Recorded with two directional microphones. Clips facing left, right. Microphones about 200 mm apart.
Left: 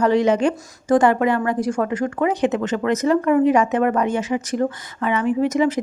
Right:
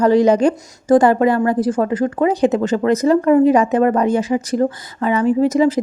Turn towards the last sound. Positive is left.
turn(degrees=-35)  # may be behind; listen again after turning